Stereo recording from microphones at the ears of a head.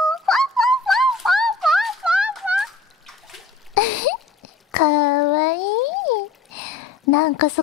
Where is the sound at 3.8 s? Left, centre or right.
Left.